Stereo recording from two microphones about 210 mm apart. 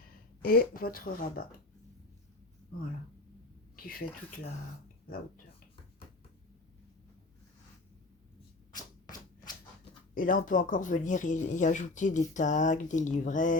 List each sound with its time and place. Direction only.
0.4 s speech: 45° left (ahead or behind)
3.8 s speech: 45° left (ahead or behind)
8.7 s a sound: 20° left (ahead or behind)
10.2 s speech: 40° left (ahead or behind)